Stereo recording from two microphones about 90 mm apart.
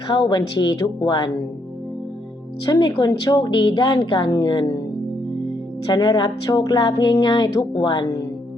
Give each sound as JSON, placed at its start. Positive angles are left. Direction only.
{"t": 0.1, "sound": "speech", "side_deg": 60}
{"t": 2.6, "sound": "a woman's voice", "side_deg": 55}
{"t": 3.1, "sound": "a woman's voice", "side_deg": 45}
{"t": 3.5, "sound": "speech", "side_deg": 65}
{"t": 5.8, "sound": "speech", "side_deg": 55}